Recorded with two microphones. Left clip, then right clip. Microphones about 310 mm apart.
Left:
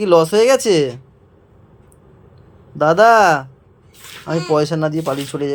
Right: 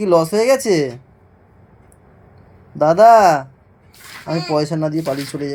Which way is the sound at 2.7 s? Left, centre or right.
Centre.